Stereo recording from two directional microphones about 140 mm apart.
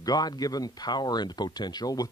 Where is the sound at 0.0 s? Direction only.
30° left (ahead or behind).